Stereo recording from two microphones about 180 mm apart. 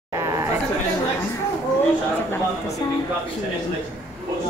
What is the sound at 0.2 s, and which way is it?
Chatter, 15° right (ahead or behind).